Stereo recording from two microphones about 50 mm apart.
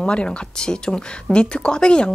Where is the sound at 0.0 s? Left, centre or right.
Left.